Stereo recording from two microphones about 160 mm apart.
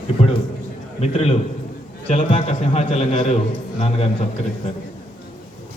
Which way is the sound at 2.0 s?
45° left (ahead or behind).